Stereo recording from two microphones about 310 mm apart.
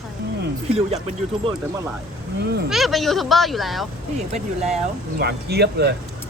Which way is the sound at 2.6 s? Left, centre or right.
Centre.